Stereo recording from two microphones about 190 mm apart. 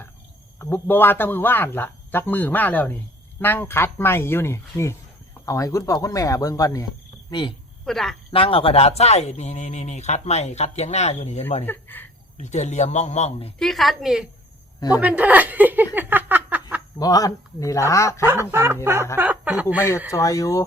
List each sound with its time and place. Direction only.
0.6 s speech: 10° left (ahead or behind)
7.3 s cricket: 25° left (ahead or behind)
7.9 s a woman's voice: centre (ahead or behind)
8.3 s speech: 30° left (ahead or behind)
11.6 s speech: 10° left (ahead or behind)
12.4 s speech: 35° left (ahead or behind)
13.6 s a woman's voice: centre (ahead or behind)
16.0 s a sound: 10° right (ahead or behind)
17.0 s speech: 20° left (ahead or behind)
18.5 s speech: 10° right (ahead or behind)
20.1 s speech: 15° left (ahead or behind)